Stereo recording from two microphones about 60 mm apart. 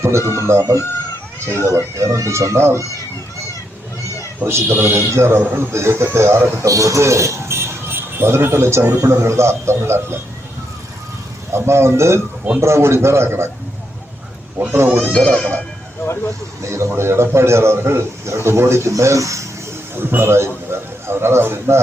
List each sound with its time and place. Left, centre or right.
0.0 s a man's voice: right
4.4 s a man's voice: right
6.6 s a man's voice: right
11.5 s a man's voice: right
15.1 s speech: centre
16.6 s a man's voice: right
20.0 s a man's voice: right